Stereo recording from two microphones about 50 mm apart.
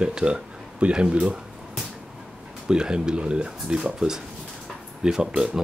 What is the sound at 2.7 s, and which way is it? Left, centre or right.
Speech, centre.